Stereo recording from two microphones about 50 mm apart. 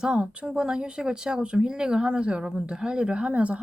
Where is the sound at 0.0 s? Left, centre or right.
Centre.